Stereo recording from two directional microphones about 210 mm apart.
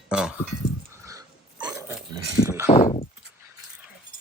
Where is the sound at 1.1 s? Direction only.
15° right (ahead or behind).